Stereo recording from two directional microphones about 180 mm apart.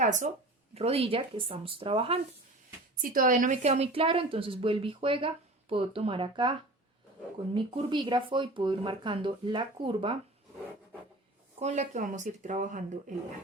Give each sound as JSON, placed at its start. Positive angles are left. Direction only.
{"t": 0.0, "sound": "speech", "side_deg": -45}
{"t": 3.0, "sound": "a woman's voice", "side_deg": -50}
{"t": 11.6, "sound": "speech", "side_deg": -40}